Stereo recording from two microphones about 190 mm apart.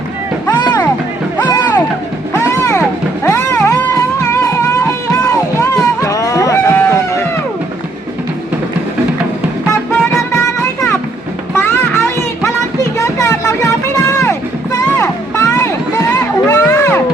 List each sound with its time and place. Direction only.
0.4 s music: 20° left (ahead or behind)
6.7 s a sound: 15° left (ahead or behind)
9.9 s music: centre (ahead or behind)
10.3 s music: 15° left (ahead or behind)